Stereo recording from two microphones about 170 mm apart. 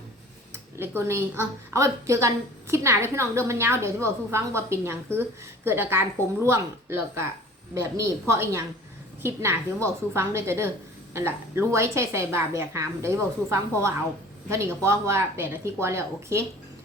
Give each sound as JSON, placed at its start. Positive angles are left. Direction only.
{"t": 0.5, "sound": "a woman's voice", "side_deg": -15}